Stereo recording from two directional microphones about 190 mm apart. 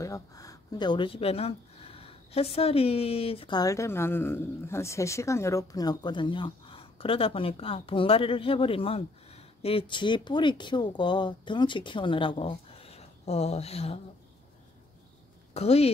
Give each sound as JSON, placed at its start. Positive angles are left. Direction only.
{"t": 0.0, "sound": "speech", "side_deg": 15}
{"t": 15.5, "sound": "speech", "side_deg": 35}